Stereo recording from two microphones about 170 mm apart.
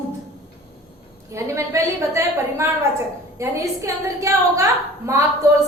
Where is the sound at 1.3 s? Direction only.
15° right (ahead or behind).